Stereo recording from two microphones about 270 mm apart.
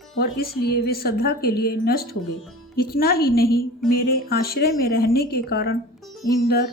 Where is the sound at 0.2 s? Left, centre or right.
Left.